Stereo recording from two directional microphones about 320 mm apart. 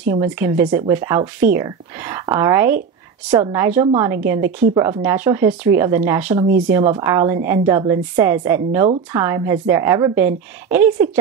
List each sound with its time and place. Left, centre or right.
0.1 s speech: centre
3.8 s speech: centre